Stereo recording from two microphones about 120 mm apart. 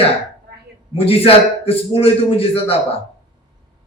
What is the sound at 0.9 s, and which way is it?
A man's voice, 55° left (ahead or behind).